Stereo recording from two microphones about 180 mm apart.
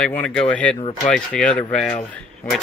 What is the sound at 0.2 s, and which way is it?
Speech, 5° left (ahead or behind).